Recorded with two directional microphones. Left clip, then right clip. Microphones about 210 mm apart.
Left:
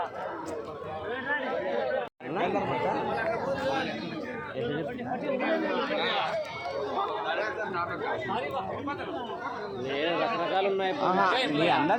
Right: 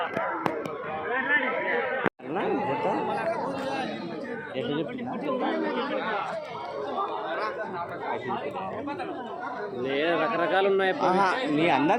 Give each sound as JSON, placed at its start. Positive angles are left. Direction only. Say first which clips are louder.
{"t": 9.9, "sound": "speech", "louder": "right 3 dB", "side_deg": -35}
{"t": 11.0, "sound": "a man's voice", "louder": "right 1 dB", "side_deg": -10}